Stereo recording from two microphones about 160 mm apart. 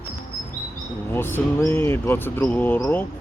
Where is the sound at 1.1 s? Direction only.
15° left (ahead or behind).